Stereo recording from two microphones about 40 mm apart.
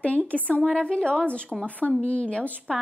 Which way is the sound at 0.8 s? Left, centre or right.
Left.